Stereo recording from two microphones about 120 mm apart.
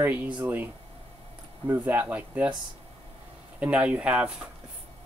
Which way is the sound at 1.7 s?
15° right (ahead or behind).